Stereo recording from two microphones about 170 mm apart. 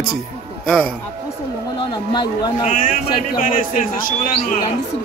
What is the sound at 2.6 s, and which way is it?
Speech, 50° left (ahead or behind).